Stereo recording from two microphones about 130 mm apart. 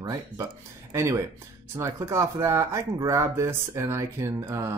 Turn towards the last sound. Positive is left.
turn(degrees=-25)  # may be behind; listen again after turning